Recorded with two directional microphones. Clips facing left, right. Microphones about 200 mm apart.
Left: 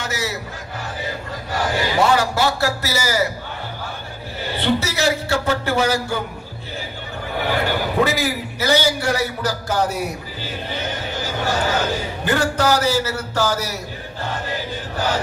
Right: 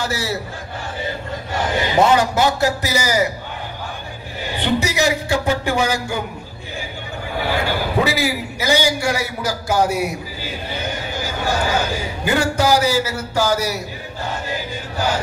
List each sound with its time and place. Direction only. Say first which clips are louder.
0.0 s a man's voice: right 3 dB; 30° right (ahead or behind)
4.4 s a man's voice: even; 15° right (ahead or behind)
7.4 s a man's voice: even; 10° right (ahead or behind)
14.5 s chant: even; 10° right (ahead or behind)